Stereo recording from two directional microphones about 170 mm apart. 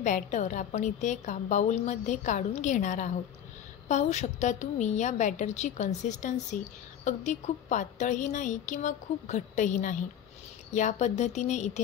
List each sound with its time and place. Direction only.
0.0 s a woman's voice: 45° left (ahead or behind)